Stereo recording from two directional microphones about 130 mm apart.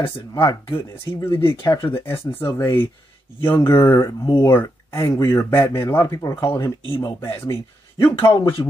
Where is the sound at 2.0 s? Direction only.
20° left (ahead or behind).